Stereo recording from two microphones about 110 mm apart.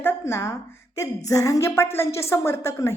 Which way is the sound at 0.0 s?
20° left (ahead or behind).